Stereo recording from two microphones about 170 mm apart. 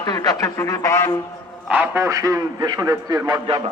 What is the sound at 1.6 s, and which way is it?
A man's voice, 10° right (ahead or behind).